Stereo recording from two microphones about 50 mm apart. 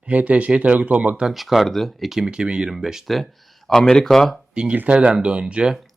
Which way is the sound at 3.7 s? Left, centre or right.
Centre.